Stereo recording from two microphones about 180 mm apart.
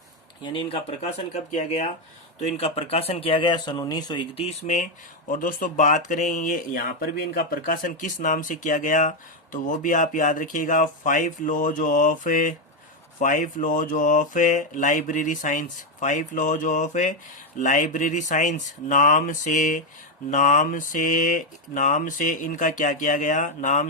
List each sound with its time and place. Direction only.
0.4 s speech: 30° left (ahead or behind)